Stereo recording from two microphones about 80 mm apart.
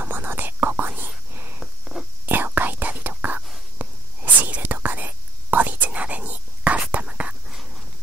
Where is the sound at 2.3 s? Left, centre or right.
Right.